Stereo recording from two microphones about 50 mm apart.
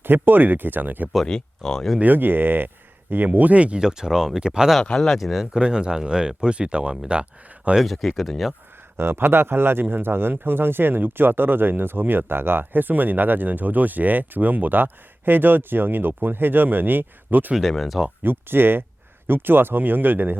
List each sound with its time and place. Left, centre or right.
0.0 s speech: right
1.2 s speech: centre
2.0 s speech: right
3.2 s speech: right
3.8 s speech: centre
4.8 s speech: centre
5.5 s speech: centre
7.9 s speech: centre
9.0 s speech: right
17.6 s speech: centre
18.2 s speech: right